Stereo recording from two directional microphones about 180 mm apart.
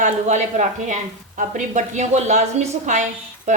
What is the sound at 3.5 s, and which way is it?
Music, 40° right (ahead or behind).